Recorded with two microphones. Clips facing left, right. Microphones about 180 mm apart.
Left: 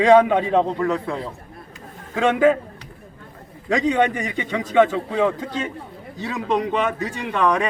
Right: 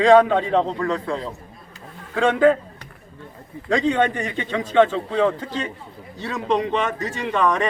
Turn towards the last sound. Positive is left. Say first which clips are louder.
# even
turn(degrees=5)  # may be behind; listen again after turning